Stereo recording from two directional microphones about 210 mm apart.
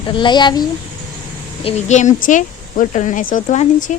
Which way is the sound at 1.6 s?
35° left (ahead or behind).